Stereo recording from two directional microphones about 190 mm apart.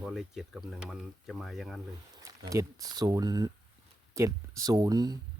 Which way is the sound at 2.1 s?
20° right (ahead or behind).